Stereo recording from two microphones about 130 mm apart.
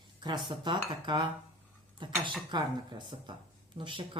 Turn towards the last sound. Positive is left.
turn(degrees=-40)  # may be behind; listen again after turning